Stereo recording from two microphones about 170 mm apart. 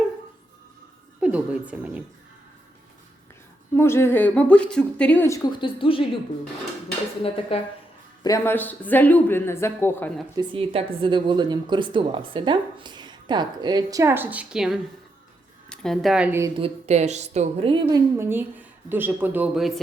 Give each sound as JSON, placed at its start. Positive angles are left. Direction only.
{"t": 1.2, "sound": "a woman's voice", "side_deg": -10}
{"t": 3.8, "sound": "speech", "side_deg": 15}
{"t": 7.5, "sound": "speech", "side_deg": 35}
{"t": 8.2, "sound": "speech", "side_deg": 15}
{"t": 10.3, "sound": "a woman's voice", "side_deg": -30}
{"t": 16.6, "sound": "a woman's voice", "side_deg": -35}
{"t": 18.2, "sound": "speech", "side_deg": -10}